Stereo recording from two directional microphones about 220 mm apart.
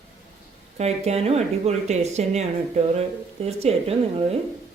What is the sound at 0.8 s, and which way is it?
Speech, 30° right (ahead or behind).